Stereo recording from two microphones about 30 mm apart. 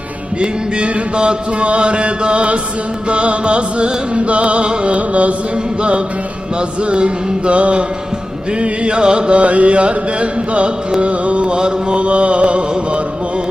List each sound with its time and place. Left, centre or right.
0.3 s chant: right
4.9 s carnatic music: right
6.6 s chant: right
9.3 s carnatic music: right
11.5 s mantra: right
11.9 s chant: right